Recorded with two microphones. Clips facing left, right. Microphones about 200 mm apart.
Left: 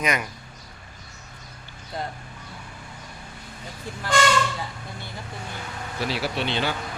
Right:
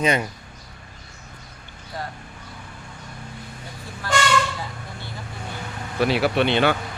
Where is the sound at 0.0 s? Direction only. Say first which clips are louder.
Right 5 dB; 30° right (ahead or behind).